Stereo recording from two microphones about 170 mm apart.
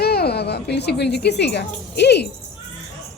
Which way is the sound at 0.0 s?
70° left (ahead or behind).